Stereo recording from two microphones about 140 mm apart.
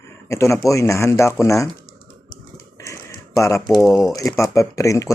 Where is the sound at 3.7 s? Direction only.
Centre (ahead or behind).